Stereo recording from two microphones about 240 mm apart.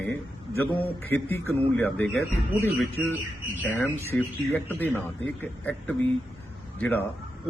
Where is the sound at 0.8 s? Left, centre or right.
Centre.